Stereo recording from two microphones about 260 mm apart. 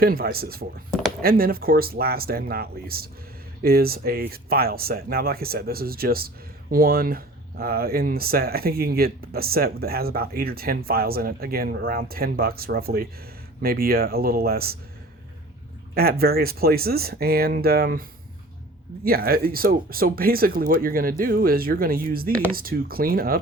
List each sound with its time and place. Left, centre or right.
0.0 s speech: right
16.0 s speech: right
19.0 s speech: right